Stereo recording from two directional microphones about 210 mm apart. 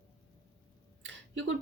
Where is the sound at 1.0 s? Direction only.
60° right (ahead or behind).